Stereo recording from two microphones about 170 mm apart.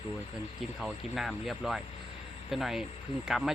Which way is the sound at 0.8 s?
Centre (ahead or behind).